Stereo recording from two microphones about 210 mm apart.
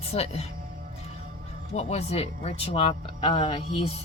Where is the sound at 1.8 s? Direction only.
30° left (ahead or behind).